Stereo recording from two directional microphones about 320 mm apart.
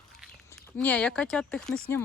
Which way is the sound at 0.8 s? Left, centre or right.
Centre.